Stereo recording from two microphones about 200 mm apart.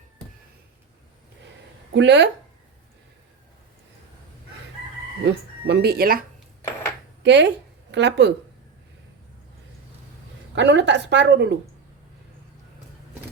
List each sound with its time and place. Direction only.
1.9 s a woman's voice: 60° right (ahead or behind)
5.2 s speech: 55° right (ahead or behind)
7.2 s a woman's voice: 60° right (ahead or behind)
10.5 s a woman's voice: 65° right (ahead or behind)